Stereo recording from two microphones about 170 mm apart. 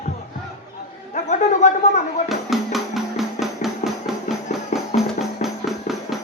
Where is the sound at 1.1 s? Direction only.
45° left (ahead or behind).